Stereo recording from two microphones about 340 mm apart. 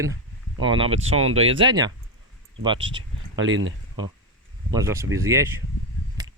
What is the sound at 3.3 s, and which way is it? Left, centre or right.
Speech, right.